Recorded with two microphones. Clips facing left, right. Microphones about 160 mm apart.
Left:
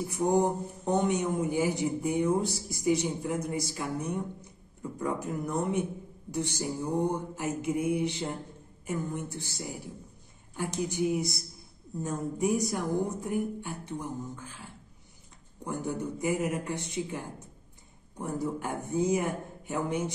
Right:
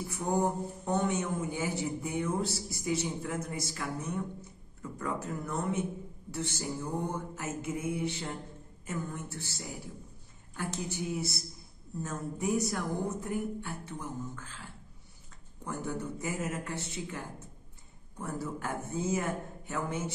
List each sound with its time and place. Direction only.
0.1 s a man's voice: 20° left (ahead or behind)
15.6 s a man's voice: 15° left (ahead or behind)